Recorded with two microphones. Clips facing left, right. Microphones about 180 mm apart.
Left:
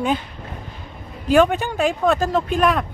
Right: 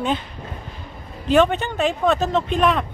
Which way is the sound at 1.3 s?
5° left (ahead or behind).